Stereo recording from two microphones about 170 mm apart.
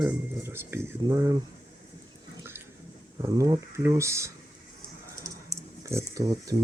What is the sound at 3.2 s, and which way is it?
Speech, 20° right (ahead or behind).